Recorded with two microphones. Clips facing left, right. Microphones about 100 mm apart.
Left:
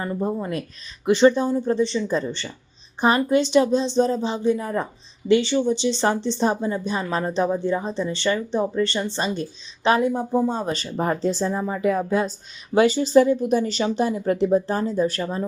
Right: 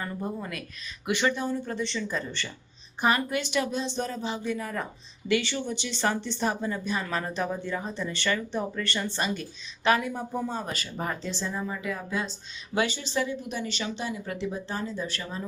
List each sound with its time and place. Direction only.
0.0 s speech: 30° left (ahead or behind)